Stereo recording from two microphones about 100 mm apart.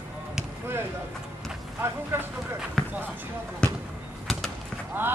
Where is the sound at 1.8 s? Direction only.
25° right (ahead or behind).